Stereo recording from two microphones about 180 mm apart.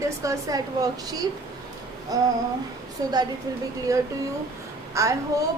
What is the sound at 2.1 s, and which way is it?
Speech, 20° right (ahead or behind).